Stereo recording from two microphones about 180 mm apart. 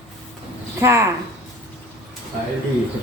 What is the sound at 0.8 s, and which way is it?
Child singing, 15° right (ahead or behind).